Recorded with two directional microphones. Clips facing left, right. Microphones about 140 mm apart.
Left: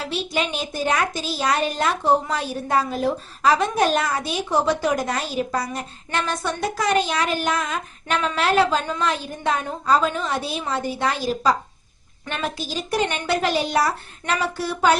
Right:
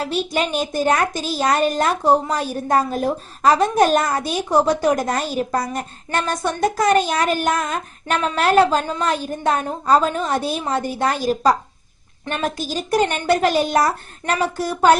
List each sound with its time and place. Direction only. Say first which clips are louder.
0.0 s a woman's voice: right 4 dB; 45° right (ahead or behind)